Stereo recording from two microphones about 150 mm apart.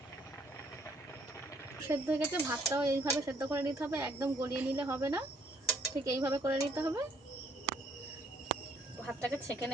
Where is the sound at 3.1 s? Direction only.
20° right (ahead or behind).